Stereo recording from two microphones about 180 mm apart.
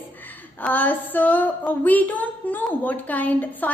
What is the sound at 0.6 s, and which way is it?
A woman's voice, 10° left (ahead or behind).